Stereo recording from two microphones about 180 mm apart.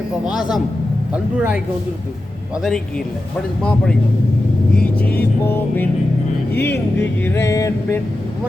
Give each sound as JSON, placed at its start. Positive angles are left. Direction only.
{"t": 0.3, "sound": "speech", "side_deg": -5}
{"t": 3.6, "sound": "speech", "side_deg": 5}
{"t": 5.5, "sound": "music", "side_deg": 10}
{"t": 6.5, "sound": "speech", "side_deg": 70}
{"t": 7.0, "sound": "music", "side_deg": 10}